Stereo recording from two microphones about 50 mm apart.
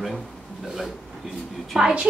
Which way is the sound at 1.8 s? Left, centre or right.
Centre.